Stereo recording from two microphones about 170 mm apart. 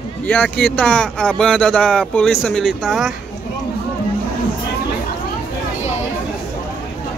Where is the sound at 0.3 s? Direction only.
10° left (ahead or behind).